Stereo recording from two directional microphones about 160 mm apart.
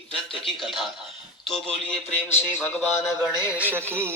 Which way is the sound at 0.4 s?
Centre (ahead or behind).